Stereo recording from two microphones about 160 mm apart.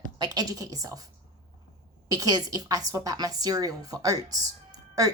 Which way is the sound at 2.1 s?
25° right (ahead or behind).